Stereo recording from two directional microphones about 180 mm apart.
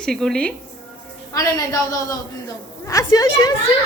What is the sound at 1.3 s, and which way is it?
A woman's voice, 20° left (ahead or behind).